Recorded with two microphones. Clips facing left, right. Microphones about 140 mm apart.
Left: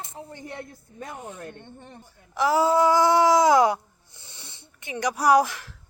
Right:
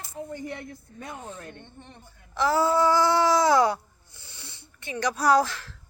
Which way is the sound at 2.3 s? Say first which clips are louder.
Left 2 dB; 10° left (ahead or behind).